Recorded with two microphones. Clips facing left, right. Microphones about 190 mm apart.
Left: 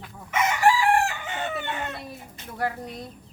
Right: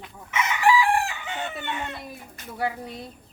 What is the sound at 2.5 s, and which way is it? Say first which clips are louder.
Speech: even; 5° right (ahead or behind).